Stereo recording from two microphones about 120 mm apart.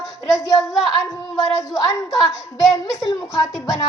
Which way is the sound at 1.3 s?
25° left (ahead or behind).